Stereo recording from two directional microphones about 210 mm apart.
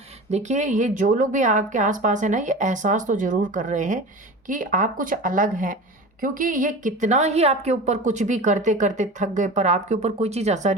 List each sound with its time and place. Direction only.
0.3 s a woman's voice: 35° right (ahead or behind)